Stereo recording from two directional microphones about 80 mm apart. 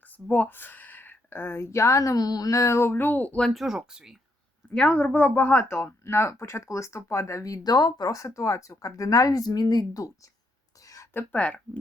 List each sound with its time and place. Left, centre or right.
0.3 s speech: left
3.3 s speech: centre
3.6 s speech: centre
4.9 s speech: left
5.6 s speech: left
8.1 s speech: left
11.1 s speech: left